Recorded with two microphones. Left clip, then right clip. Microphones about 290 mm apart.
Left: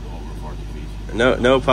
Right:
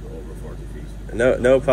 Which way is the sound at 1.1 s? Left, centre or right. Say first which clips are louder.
Even; centre.